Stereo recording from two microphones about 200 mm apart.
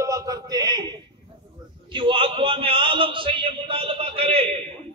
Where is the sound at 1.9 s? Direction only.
25° right (ahead or behind).